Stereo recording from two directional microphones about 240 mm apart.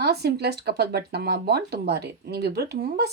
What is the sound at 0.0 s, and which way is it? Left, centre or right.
Speech, right.